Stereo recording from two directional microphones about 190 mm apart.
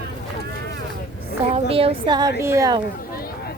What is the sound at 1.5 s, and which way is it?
Speech, 30° right (ahead or behind).